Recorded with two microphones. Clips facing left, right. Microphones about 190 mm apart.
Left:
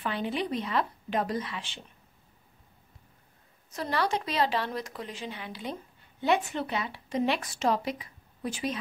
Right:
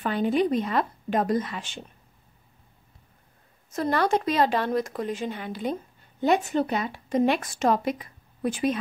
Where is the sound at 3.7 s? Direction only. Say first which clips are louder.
Right 6 dB; 50° right (ahead or behind).